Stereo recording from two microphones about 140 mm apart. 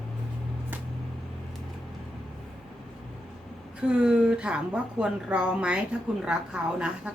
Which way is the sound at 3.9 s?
10° right (ahead or behind).